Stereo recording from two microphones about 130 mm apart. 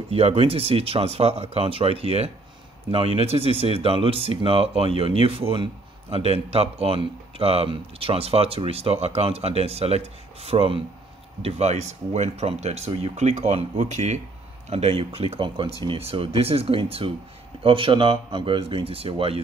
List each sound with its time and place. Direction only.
0.1 s speech: 50° right (ahead or behind); by 14.2 s 65° right (ahead or behind)
14.7 s speech: 50° right (ahead or behind)